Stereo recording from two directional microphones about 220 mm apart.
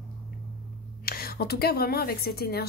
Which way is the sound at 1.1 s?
45° left (ahead or behind).